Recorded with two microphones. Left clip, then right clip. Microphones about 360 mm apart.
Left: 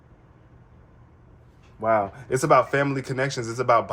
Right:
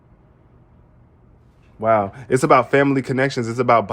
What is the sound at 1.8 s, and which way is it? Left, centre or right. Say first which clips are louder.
Speech: right 5 dB; right.